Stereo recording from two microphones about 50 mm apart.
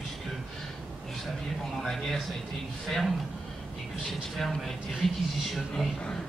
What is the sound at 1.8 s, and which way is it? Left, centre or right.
Speech, centre.